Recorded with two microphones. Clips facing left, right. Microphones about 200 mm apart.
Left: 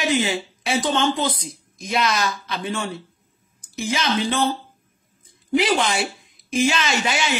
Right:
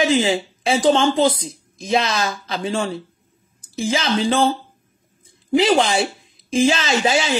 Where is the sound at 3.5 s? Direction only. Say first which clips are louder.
Right 5 dB; 90° right.